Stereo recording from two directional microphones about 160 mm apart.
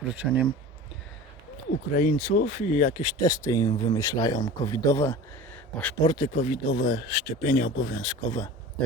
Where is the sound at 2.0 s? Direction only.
55° left (ahead or behind).